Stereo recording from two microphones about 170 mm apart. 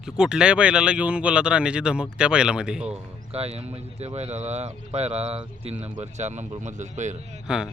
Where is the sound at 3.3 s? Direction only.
35° right (ahead or behind).